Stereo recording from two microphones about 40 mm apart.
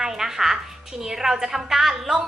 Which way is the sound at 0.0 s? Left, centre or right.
Centre.